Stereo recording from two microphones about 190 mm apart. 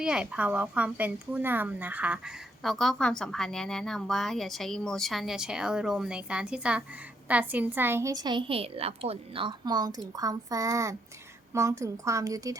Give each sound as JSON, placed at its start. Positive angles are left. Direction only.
{"t": 0.0, "sound": "a woman's voice", "side_deg": -5}